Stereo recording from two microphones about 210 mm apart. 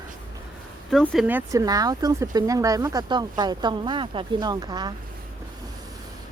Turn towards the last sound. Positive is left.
turn(degrees=-20)  # may be behind; listen again after turning